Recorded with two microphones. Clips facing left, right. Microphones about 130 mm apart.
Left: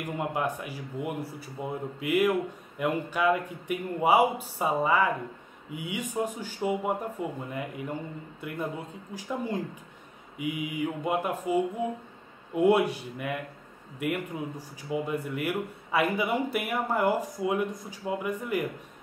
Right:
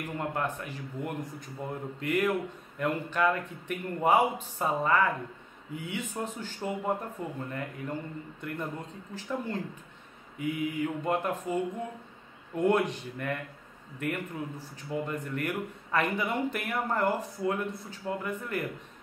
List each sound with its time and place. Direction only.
0.0 s speech: 10° left (ahead or behind)